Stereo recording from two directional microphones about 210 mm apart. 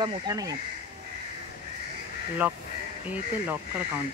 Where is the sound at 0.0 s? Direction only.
20° right (ahead or behind).